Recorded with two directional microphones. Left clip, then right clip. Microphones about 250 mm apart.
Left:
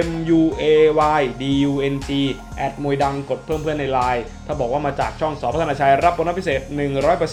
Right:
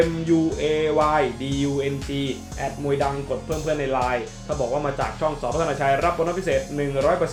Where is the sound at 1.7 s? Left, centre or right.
Left.